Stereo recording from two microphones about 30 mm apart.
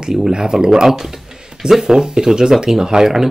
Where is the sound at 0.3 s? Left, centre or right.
Centre.